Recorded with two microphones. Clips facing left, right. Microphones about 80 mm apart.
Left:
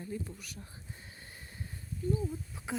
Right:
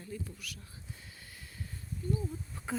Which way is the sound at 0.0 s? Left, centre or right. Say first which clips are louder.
Left 3 dB; left.